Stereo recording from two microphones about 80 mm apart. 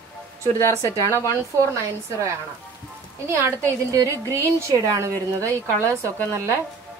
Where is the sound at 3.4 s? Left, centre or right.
Right.